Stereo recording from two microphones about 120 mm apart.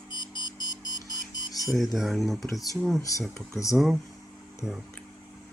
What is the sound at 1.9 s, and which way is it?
Speech, centre (ahead or behind).